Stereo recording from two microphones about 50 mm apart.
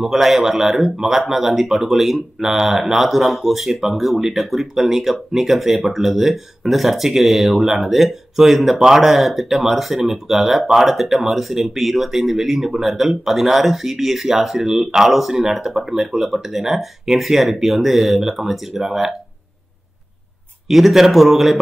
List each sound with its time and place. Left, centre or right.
0.0 s a man's voice: centre
20.6 s a man's voice: centre